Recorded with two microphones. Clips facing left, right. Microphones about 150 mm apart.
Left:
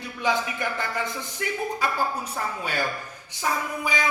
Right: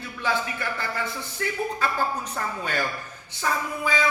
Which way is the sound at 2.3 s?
10° left (ahead or behind).